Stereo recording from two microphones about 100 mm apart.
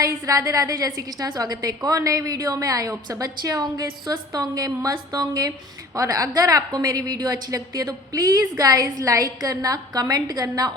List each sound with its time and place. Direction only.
0.0 s a woman's voice: 35° right (ahead or behind)